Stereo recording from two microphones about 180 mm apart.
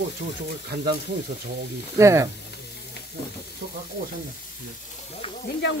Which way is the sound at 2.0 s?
15° right (ahead or behind).